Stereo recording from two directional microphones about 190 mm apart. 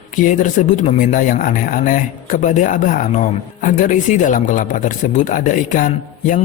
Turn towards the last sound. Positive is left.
turn(degrees=40)  # may be behind; listen again after turning